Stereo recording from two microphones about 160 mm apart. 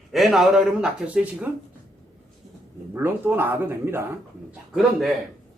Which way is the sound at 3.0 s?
15° right (ahead or behind).